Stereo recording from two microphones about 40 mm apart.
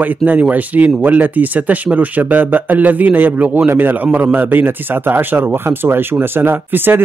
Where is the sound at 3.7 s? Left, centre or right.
Right.